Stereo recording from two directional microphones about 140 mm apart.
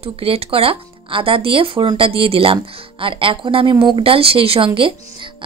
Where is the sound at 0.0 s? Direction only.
45° right (ahead or behind).